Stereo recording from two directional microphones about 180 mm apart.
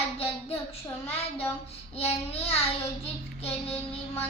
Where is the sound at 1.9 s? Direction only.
35° left (ahead or behind).